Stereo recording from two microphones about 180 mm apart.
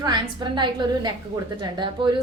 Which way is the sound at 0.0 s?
25° right (ahead or behind).